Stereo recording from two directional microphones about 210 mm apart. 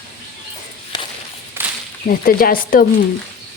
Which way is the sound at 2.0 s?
45° left (ahead or behind).